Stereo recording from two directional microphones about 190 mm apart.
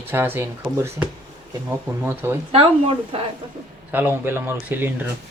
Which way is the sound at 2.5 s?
30° right (ahead or behind).